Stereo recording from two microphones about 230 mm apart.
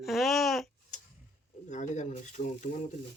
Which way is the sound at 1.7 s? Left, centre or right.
Left.